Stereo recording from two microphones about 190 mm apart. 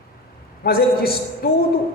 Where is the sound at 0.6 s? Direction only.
55° left (ahead or behind).